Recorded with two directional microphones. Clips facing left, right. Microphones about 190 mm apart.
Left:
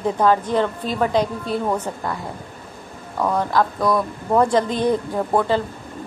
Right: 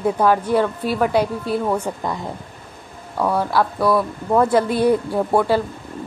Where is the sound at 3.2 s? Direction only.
5° right (ahead or behind).